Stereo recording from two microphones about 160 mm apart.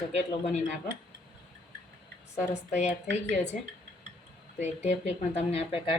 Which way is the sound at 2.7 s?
45° left (ahead or behind).